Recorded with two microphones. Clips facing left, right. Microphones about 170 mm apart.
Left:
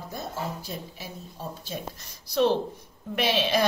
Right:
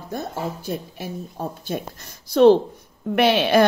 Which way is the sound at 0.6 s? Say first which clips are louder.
Right 8 dB; 55° right (ahead or behind).